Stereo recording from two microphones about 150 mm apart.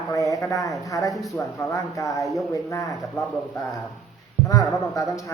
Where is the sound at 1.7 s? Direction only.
20° left (ahead or behind).